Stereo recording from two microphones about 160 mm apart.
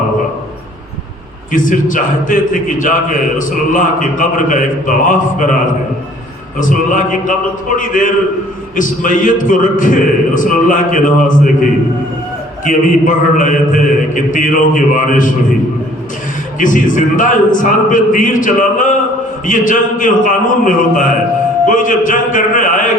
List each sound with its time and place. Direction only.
1.5 s a man's voice: 55° left (ahead or behind)
6.6 s a man's voice: 55° left (ahead or behind)
12.6 s a man's voice: 55° left (ahead or behind)
16.6 s a man's voice: 55° left (ahead or behind)